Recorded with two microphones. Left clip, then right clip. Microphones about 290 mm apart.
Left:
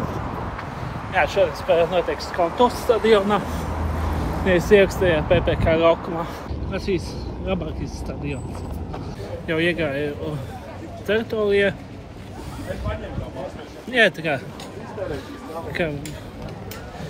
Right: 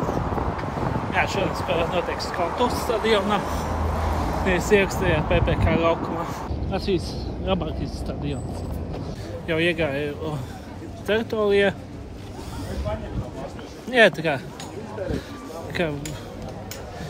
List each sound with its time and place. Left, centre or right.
1.1 s speech: centre
4.5 s speech: centre
7.4 s speech: centre
9.5 s a man's voice: centre
13.8 s a man's voice: centre
15.8 s a man's voice: centre